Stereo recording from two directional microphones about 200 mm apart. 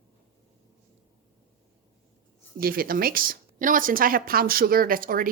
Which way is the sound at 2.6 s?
50° right (ahead or behind).